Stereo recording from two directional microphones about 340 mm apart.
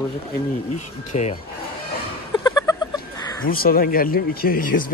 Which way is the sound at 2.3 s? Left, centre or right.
Centre.